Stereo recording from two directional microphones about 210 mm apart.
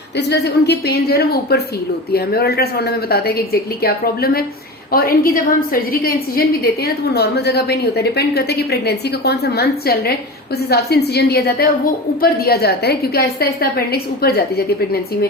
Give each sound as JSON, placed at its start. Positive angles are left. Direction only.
{"t": 0.2, "sound": "a woman's voice", "side_deg": 55}